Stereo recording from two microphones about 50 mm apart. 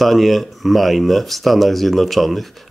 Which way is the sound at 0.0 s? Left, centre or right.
Centre.